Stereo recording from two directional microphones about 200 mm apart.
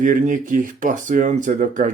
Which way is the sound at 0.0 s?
40° right (ahead or behind).